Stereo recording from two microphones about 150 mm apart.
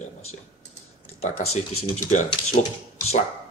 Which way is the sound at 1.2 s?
45° left (ahead or behind).